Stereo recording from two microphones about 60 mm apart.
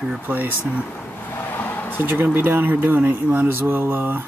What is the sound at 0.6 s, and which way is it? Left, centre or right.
Speech, left.